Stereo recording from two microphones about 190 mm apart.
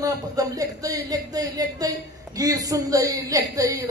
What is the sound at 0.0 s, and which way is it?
A man's voice, 20° right (ahead or behind).